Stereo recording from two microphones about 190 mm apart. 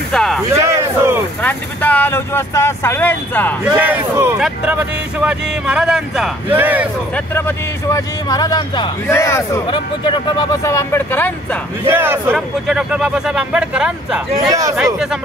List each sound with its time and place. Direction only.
0.1 s a sound: centre (ahead or behind)
0.5 s speech: 15° right (ahead or behind)
1.4 s speech: 10° left (ahead or behind)
3.6 s a man's voice: 10° right (ahead or behind)
7.3 s speech: 15° left (ahead or behind)
11.9 s a man's voice: 10° right (ahead or behind)